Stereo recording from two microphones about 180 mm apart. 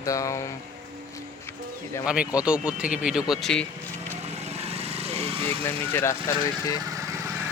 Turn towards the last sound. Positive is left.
turn(degrees=20)  # may be behind; listen again after turning